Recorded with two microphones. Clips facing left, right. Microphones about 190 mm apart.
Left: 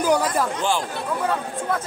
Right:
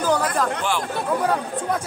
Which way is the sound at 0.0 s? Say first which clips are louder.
Left 1 dB; 10° left (ahead or behind).